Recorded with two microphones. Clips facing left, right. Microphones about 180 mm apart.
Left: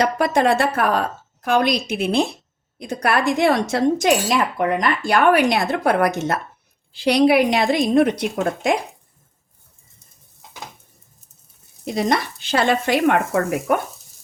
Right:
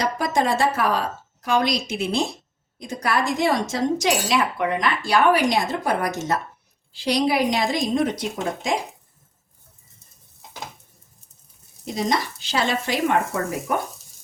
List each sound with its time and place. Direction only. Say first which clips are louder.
0.0 s a woman's voice: left 5 dB; 65° left (ahead or behind)
4.5 s speech: left 3 dB; 45° left (ahead or behind); by 8.7 s 60° left (ahead or behind)
11.9 s speech: left 3 dB; 60° left (ahead or behind)